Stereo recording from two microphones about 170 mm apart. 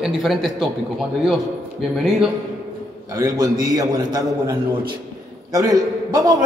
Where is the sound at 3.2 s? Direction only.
20° right (ahead or behind).